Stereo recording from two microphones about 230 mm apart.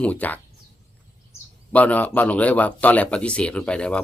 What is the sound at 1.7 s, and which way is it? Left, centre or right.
Speech, centre.